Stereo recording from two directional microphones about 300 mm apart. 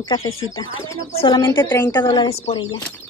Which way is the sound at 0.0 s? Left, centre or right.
Centre.